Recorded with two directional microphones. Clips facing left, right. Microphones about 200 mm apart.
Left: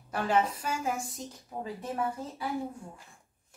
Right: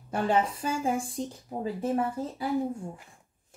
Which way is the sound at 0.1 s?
30° right (ahead or behind).